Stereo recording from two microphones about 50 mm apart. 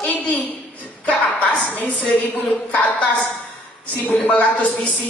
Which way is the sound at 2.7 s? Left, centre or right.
Left.